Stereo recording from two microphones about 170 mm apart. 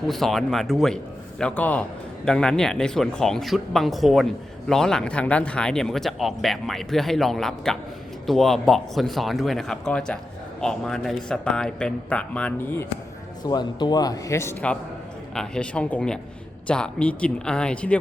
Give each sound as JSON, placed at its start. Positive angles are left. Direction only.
{"t": 0.1, "sound": "speech", "side_deg": 0}
{"t": 13.4, "sound": "speech", "side_deg": 25}
{"t": 15.4, "sound": "speech", "side_deg": 5}